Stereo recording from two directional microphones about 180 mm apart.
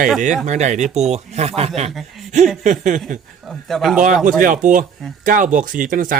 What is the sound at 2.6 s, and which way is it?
Speech, 45° right (ahead or behind).